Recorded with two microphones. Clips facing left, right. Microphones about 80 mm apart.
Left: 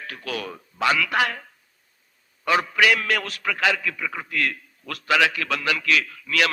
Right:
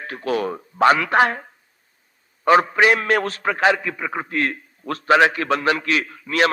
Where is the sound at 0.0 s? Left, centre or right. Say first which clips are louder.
Right 9 dB; right.